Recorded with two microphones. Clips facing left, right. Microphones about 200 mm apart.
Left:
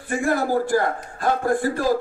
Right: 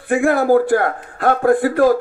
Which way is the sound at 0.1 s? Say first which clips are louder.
Right 8 dB; 60° right (ahead or behind).